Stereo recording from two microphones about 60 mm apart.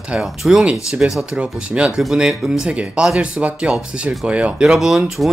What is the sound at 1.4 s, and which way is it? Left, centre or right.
Speech, right.